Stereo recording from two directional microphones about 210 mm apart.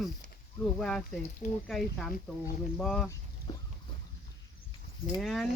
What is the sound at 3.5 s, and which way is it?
Boat, 20° left (ahead or behind).